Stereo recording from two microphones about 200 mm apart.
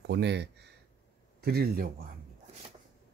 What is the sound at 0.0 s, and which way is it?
Speech, 60° right (ahead or behind).